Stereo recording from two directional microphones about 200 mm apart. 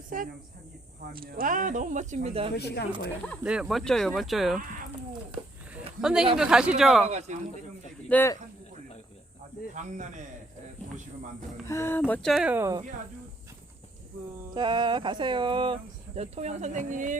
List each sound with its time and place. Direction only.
0.1 s speech: 45° right (ahead or behind)
2.6 s speech: 55° left (ahead or behind)
3.4 s speech: 5° right (ahead or behind)
6.0 s speech: 5° right (ahead or behind)
7.0 s speech: 35° right (ahead or behind)
8.1 s speech: 10° left (ahead or behind)
9.7 s speech: 35° right (ahead or behind)
11.7 s speech: 15° left (ahead or behind); by 12.8 s 15° right (ahead or behind)
14.5 s speech: 20° right (ahead or behind); by 17.2 s 40° right (ahead or behind)